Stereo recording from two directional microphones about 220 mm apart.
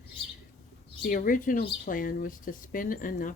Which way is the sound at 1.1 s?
40° left (ahead or behind).